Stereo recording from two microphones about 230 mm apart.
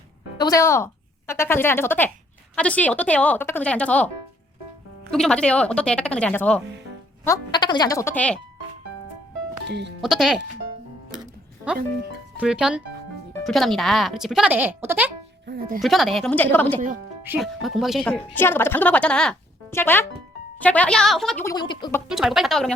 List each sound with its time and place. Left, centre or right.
0.3 s a woman's voice: centre
5.1 s a woman's voice: centre
7.3 s speech: centre
9.6 s speech: right
10.0 s a woman's voice: centre
12.4 s a woman's voice: centre
15.4 s speech: right
15.8 s a woman's voice: centre
17.2 s a woman's voice: centre
22.1 s a woman's voice: centre